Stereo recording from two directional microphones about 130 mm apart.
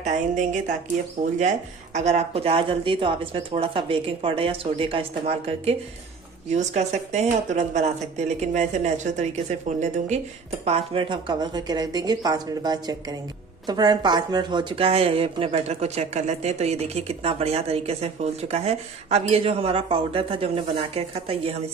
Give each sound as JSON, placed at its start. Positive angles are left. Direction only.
{"t": 0.0, "sound": "a woman's voice", "side_deg": -70}
{"t": 2.0, "sound": "speech", "side_deg": -60}
{"t": 6.5, "sound": "speech", "side_deg": -60}